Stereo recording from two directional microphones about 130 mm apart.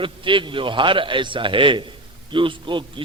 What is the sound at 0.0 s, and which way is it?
A man's voice, 40° right (ahead or behind).